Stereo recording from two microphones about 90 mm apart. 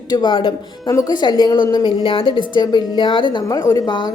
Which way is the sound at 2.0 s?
75° left (ahead or behind).